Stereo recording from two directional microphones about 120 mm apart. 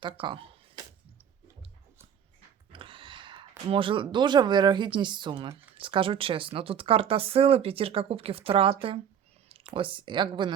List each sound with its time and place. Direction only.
0.0 s speech: 45° right (ahead or behind)
2.7 s a sound: 45° right (ahead or behind)
3.7 s speech: 45° right (ahead or behind)